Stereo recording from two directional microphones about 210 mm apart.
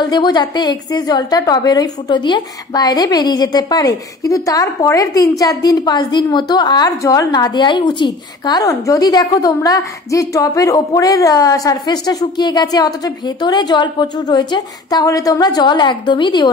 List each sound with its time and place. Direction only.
0.0 s a woman's voice: 20° left (ahead or behind)